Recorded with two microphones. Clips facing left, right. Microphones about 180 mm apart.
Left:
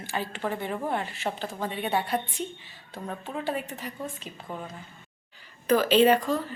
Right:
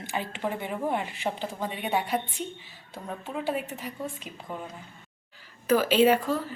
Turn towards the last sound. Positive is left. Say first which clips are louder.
# even
turn(degrees=-5)  # may be behind; listen again after turning